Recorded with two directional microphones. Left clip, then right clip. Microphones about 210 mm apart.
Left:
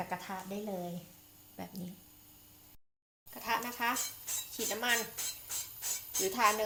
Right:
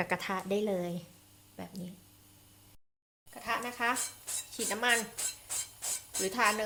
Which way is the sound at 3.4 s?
5° right (ahead or behind).